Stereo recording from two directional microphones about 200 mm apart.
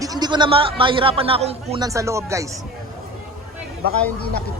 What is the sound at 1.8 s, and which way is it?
Speech, 15° right (ahead or behind).